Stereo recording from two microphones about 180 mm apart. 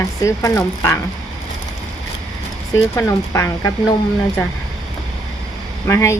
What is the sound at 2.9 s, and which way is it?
Speech, 15° left (ahead or behind).